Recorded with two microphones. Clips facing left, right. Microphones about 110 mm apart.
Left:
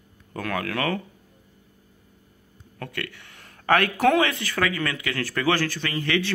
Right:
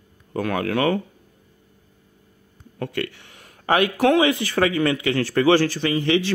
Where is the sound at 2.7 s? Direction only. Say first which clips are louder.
Right 7 dB; 25° right (ahead or behind).